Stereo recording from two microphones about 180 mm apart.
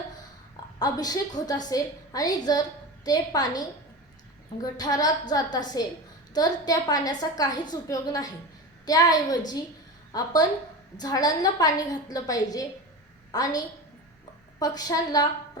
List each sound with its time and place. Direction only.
0.8 s a woman's voice: 20° left (ahead or behind)